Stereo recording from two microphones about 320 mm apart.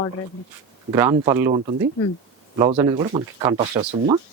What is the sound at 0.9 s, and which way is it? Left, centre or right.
Speech, centre.